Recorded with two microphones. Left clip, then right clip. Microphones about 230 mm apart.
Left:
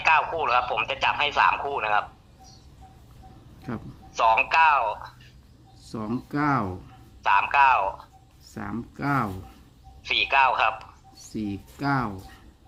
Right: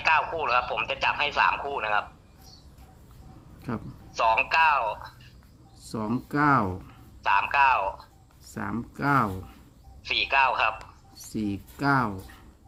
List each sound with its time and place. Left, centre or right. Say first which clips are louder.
0.0 s a man's voice: left 2 dB; centre
3.6 s a man's voice: right 1 dB; centre